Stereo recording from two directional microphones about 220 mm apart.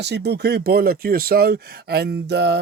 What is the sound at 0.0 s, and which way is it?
Speech, 50° right (ahead or behind).